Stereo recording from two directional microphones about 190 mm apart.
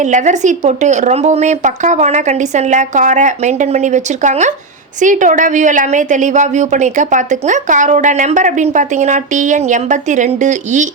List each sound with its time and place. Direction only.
0.0 s a woman's voice: 40° right (ahead or behind)